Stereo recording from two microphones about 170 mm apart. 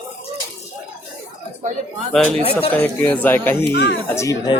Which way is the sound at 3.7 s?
80° left.